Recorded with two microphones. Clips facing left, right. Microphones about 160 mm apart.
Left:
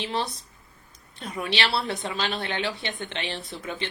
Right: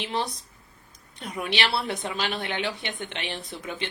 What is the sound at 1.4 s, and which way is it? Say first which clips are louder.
A woman's voice: even; 15° right (ahead or behind).